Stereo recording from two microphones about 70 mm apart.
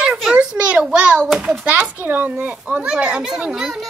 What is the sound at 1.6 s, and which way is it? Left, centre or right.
A child's voice, right.